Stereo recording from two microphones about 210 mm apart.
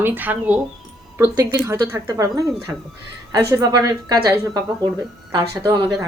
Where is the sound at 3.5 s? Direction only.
15° right (ahead or behind).